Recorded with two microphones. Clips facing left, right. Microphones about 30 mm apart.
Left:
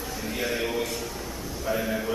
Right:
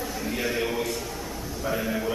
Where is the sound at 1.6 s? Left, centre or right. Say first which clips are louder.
Even; centre.